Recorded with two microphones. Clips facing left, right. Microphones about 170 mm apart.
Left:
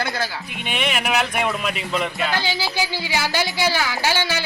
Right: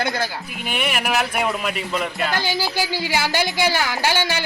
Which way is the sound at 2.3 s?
15° right (ahead or behind).